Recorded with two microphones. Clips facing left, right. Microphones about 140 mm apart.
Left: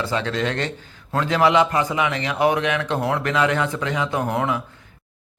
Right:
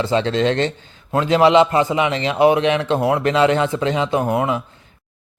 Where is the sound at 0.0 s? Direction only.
25° right (ahead or behind).